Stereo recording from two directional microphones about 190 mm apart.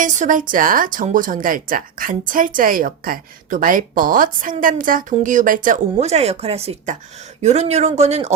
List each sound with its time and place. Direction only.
0.0 s a woman's voice: 40° right (ahead or behind)